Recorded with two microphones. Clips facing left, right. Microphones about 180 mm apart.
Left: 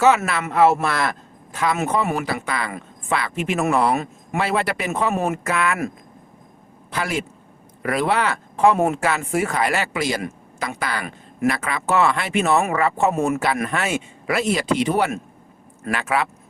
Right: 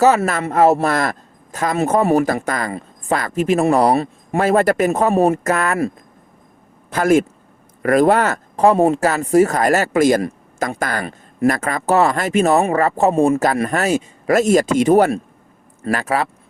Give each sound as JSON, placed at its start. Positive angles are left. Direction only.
{"t": 0.0, "sound": "speech", "side_deg": -40}
{"t": 6.9, "sound": "speech", "side_deg": -45}
{"t": 13.4, "sound": "speech", "side_deg": -40}